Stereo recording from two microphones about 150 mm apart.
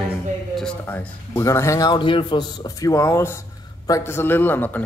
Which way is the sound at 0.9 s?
15° left (ahead or behind).